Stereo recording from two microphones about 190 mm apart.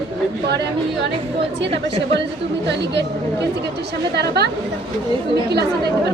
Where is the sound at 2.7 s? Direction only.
65° right (ahead or behind).